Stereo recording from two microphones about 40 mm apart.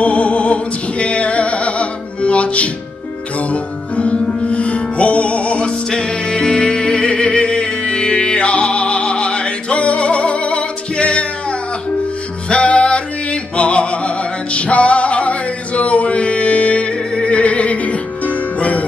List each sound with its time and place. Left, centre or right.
0.0 s music: left
5.9 s music: centre
12.4 s music: left